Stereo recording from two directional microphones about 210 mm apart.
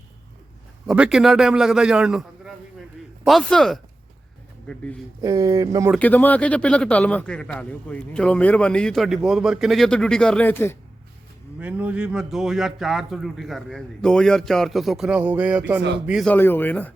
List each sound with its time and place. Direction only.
0.9 s speech: 5° right (ahead or behind)
5.2 s speech: 15° right (ahead or behind)
5.9 s speech: 10° left (ahead or behind)
11.6 s speech: 5° right (ahead or behind)